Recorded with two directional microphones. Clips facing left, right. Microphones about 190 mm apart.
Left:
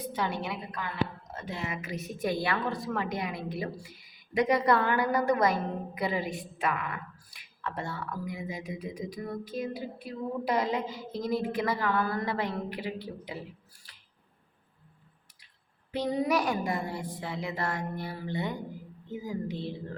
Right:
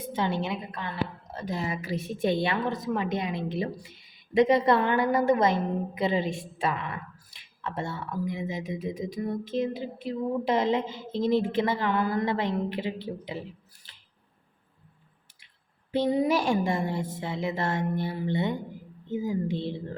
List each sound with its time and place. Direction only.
0.0 s a woman's voice: 25° right (ahead or behind)
15.9 s a woman's voice: 25° right (ahead or behind)